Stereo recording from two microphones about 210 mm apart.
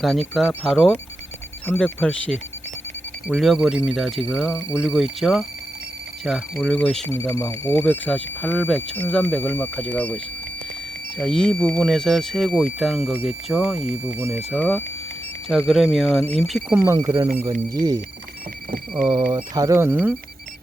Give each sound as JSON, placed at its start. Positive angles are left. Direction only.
{"t": 0.0, "sound": "speech", "side_deg": 0}
{"t": 11.2, "sound": "speech", "side_deg": 5}
{"t": 19.3, "sound": "speech", "side_deg": -20}